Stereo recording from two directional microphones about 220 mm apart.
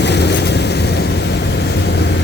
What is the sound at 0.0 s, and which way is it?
Vehicle, 50° left (ahead or behind).